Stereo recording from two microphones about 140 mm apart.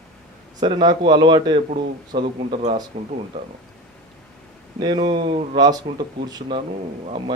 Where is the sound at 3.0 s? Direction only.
50° right (ahead or behind).